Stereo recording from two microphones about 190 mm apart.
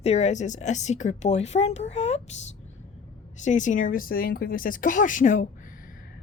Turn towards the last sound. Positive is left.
turn(degrees=45)  # may be behind; listen again after turning